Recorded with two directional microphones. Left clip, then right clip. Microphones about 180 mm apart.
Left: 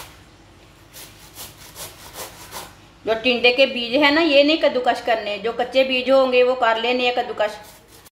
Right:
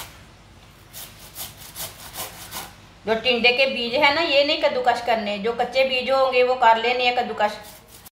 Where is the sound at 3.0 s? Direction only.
40° left (ahead or behind).